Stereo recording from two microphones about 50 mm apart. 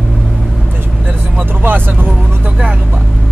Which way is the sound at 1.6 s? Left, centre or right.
Right.